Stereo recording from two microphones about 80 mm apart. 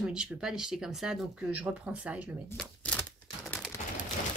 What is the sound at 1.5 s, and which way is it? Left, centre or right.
Speech, centre.